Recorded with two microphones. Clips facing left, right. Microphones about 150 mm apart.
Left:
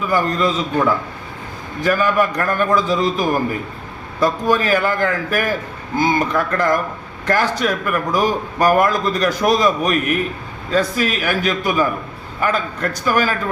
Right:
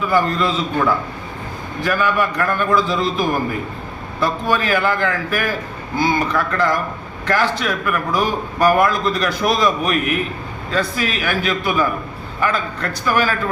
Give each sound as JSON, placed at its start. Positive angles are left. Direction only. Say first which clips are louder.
{"t": 0.1, "sound": "a man's voice", "louder": "left 1 dB", "side_deg": 45}
{"t": 1.8, "sound": "a man's voice", "louder": "left 2 dB", "side_deg": 45}